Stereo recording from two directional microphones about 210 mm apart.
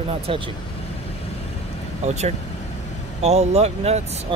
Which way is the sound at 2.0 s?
35° right (ahead or behind).